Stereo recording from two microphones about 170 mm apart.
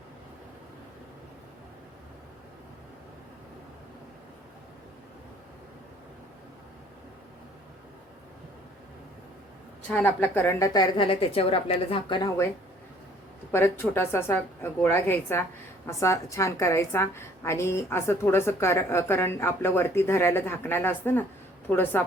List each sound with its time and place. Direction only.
9.9 s a woman's voice: 10° left (ahead or behind); by 12.3 s 30° left (ahead or behind)
13.5 s a woman's voice: 15° left (ahead or behind)